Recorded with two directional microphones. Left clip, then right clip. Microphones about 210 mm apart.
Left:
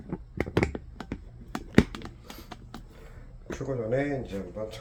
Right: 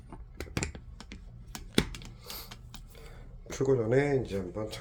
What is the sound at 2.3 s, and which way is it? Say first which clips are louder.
Music: right 2 dB; 55° right (ahead or behind).